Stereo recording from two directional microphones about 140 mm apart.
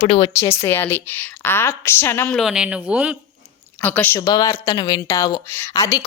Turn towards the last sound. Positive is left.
turn(degrees=25)  # may be behind; listen again after turning